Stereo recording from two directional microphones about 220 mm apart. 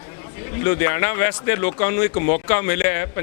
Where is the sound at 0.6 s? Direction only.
15° left (ahead or behind).